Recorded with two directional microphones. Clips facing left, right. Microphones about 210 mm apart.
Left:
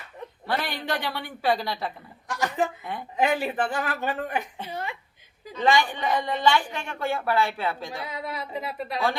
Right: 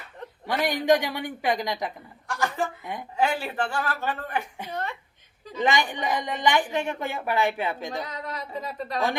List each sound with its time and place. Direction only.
0.4 s a woman's voice: 15° right (ahead or behind)
2.2 s chuckle: 20° left (ahead or behind)
3.2 s a man's voice: 15° left (ahead or behind)
5.5 s a woman's voice: 15° right (ahead or behind)
8.0 s a man's voice: 10° left (ahead or behind)